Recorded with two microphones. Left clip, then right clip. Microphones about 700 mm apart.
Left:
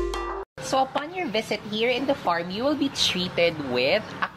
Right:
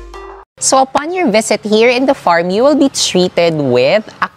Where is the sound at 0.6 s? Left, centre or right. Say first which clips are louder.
Right 13 dB; right.